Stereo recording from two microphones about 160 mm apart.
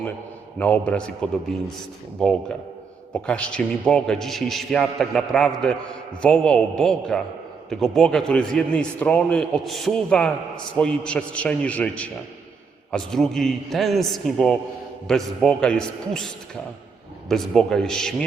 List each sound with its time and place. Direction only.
0.6 s a man's voice: 10° left (ahead or behind)